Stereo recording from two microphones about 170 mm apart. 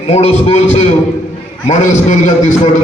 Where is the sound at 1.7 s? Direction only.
45° left (ahead or behind).